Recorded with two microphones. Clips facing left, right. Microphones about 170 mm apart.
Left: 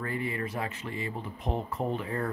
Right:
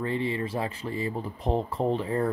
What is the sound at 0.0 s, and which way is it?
Speech, 25° right (ahead or behind).